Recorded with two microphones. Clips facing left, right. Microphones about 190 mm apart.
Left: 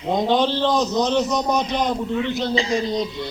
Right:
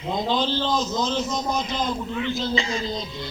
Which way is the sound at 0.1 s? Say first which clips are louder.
Left 5 dB; 70° left (ahead or behind).